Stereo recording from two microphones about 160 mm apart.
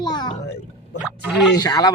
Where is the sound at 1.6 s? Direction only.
25° left (ahead or behind).